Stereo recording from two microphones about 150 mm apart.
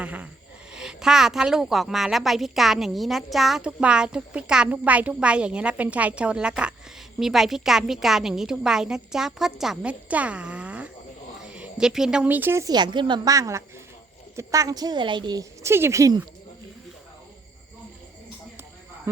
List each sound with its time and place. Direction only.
0.0 s a sound: 10° right (ahead or behind)
0.7 s a woman's voice: 5° right (ahead or behind); by 16.2 s 20° right (ahead or behind)
19.1 s speech: 15° right (ahead or behind)